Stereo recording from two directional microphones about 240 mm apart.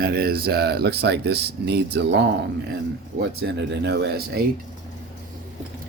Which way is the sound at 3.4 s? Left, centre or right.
Right.